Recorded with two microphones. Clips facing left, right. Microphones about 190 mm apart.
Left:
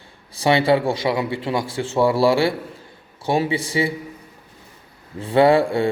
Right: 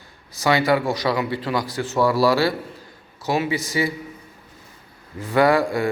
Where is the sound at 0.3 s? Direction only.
30° left (ahead or behind).